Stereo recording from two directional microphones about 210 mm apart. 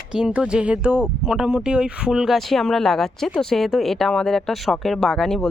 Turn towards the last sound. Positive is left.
turn(degrees=0)  # may be behind; listen again after turning